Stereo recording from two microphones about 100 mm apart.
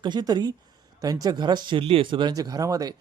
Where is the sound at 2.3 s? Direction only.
40° right (ahead or behind).